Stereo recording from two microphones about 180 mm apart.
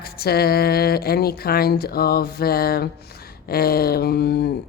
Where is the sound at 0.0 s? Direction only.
60° left (ahead or behind).